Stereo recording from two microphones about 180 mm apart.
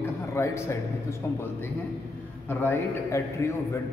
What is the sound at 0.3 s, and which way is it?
A man's voice, 15° left (ahead or behind).